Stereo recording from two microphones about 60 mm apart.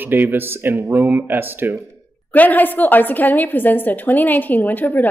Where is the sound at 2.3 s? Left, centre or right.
Left.